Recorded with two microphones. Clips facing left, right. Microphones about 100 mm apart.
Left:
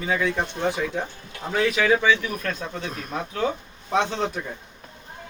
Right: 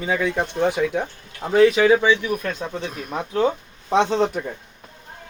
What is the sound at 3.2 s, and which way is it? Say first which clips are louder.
Speech: right 6 dB; 30° right (ahead or behind).